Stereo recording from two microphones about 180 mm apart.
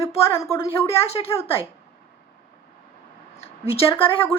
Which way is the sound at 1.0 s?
35° left (ahead or behind).